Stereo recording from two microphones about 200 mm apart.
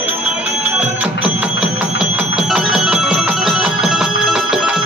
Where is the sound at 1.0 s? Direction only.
5° right (ahead or behind).